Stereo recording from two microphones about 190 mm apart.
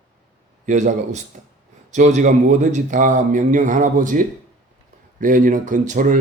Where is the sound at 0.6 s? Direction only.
40° right (ahead or behind).